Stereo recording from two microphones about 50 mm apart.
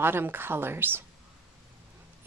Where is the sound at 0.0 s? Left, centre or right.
Right.